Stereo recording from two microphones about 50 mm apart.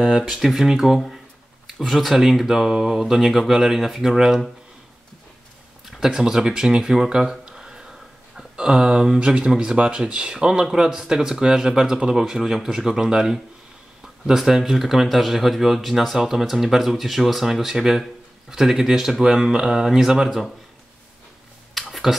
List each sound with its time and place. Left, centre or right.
0.2 s speech: centre
5.9 s speech: centre
21.7 s a sound: centre